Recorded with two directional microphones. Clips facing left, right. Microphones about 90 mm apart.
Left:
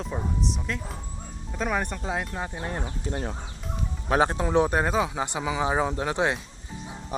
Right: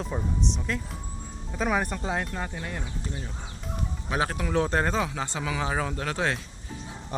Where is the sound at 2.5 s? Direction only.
35° left (ahead or behind).